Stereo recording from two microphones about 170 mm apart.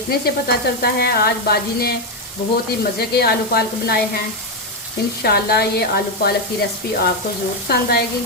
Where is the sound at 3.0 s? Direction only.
65° left (ahead or behind).